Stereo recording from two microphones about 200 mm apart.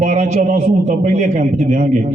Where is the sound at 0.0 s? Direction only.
35° right (ahead or behind).